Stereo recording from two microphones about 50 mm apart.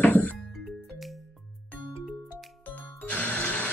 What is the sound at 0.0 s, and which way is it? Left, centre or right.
Music, left.